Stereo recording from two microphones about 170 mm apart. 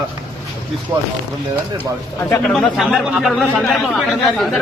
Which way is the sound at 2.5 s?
Centre (ahead or behind).